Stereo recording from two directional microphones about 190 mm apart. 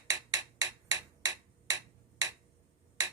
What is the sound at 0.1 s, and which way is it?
Hammer, 20° right (ahead or behind).